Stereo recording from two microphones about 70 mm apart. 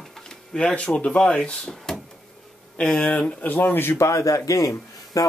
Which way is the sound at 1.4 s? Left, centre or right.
Centre.